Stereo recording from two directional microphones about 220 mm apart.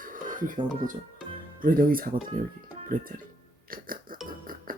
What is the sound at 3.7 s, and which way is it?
Music, 40° right (ahead or behind).